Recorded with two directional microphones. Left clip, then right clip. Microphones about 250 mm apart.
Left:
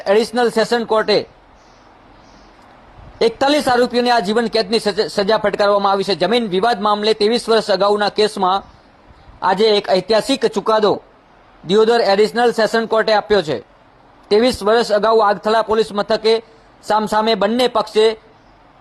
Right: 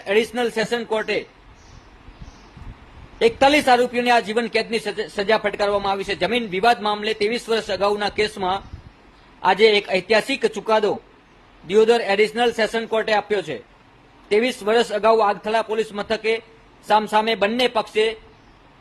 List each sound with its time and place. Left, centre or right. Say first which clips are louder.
0.0 s speech: left 6 dB; left
3.2 s speech: left 1 dB; left